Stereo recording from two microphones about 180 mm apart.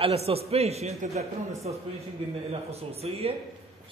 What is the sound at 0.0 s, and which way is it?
A man's voice, 35° right (ahead or behind).